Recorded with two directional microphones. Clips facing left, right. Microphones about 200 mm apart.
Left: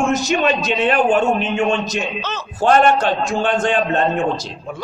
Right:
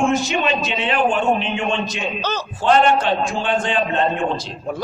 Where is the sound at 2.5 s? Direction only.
45° left (ahead or behind).